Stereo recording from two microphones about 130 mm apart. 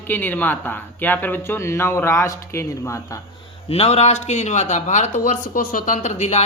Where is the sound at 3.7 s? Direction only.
50° left (ahead or behind).